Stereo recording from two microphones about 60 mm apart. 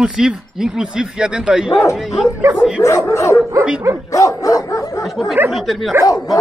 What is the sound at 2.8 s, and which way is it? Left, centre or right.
Speech, left.